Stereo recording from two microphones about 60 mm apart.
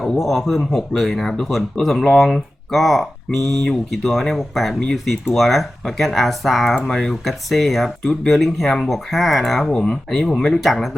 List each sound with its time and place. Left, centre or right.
0.2 s speech: centre